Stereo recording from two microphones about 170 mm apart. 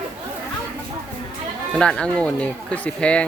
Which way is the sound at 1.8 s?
5° left (ahead or behind).